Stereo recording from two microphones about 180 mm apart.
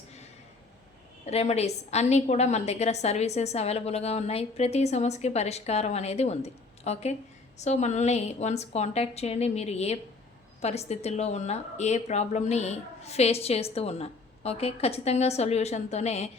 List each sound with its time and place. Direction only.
1.3 s a woman's voice: 35° left (ahead or behind)